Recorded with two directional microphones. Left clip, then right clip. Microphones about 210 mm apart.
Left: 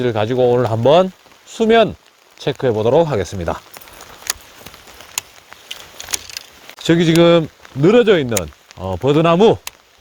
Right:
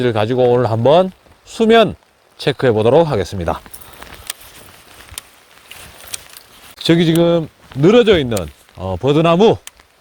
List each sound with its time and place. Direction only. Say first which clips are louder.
0.0 s speech: right 1 dB; 20° right (ahead or behind)
6.8 s speech: right 1 dB; 15° right (ahead or behind)
7.1 s speech: left 3 dB; 5° left (ahead or behind)
7.8 s speech: right 1 dB; 15° right (ahead or behind)